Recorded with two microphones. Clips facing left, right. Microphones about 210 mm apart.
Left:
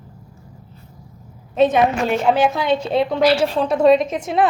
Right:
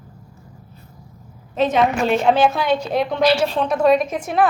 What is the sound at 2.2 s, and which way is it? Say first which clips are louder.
Speech: even; 10° left (ahead or behind).